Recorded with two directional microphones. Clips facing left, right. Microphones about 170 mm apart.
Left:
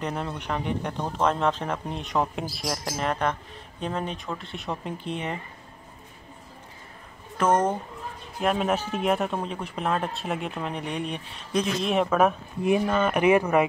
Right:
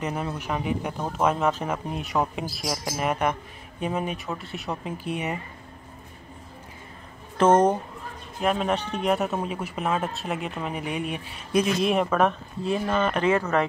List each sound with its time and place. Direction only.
0.0 s speech: 5° right (ahead or behind)
7.3 s speech: 25° right (ahead or behind)
8.4 s speech: centre (ahead or behind)